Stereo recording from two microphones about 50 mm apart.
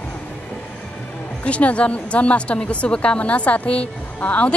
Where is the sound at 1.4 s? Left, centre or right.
Left.